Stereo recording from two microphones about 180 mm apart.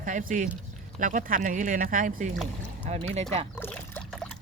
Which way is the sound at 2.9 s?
35° right (ahead or behind).